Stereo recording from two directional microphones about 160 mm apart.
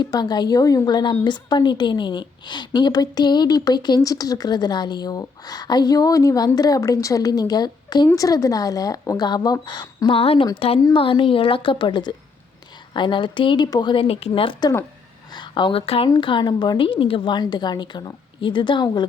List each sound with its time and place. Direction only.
0.0 s a woman's voice: 25° left (ahead or behind)